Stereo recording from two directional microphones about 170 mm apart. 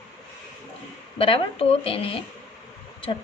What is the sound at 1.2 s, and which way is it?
Speech, 35° left (ahead or behind).